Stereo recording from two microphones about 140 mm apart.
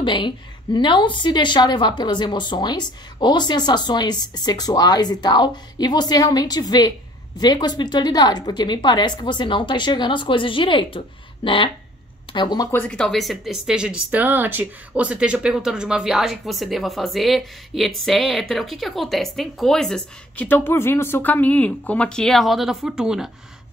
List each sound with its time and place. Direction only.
0.0 s a woman's voice: 35° left (ahead or behind)
12.7 s speech: 10° left (ahead or behind)